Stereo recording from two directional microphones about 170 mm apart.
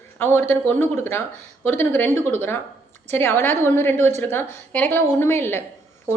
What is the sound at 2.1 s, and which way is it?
Speech, 40° right (ahead or behind).